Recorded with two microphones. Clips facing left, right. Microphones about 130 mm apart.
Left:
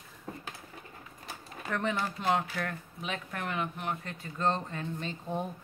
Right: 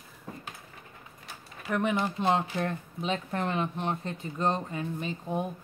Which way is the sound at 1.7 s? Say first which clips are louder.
Right 4 dB; 15° right (ahead or behind).